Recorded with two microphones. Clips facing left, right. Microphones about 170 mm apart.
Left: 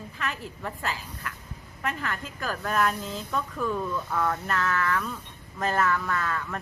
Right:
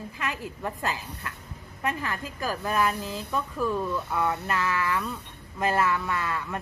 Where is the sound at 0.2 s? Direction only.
15° right (ahead or behind).